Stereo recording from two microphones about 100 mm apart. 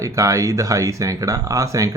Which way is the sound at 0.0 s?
30° right (ahead or behind).